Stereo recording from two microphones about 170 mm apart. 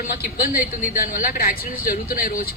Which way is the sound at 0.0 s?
65° left (ahead or behind).